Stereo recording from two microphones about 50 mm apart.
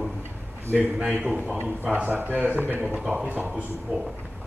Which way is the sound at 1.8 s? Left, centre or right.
Right.